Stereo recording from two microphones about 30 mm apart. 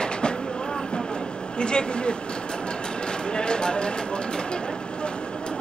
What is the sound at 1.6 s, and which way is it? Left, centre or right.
Vehicle, left.